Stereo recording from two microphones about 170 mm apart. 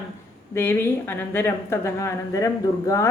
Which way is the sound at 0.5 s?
15° left (ahead or behind).